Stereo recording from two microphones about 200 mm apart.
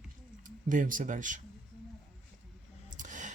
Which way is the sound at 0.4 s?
40° right (ahead or behind).